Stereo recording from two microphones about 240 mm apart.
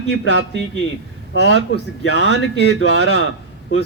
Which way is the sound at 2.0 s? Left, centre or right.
Left.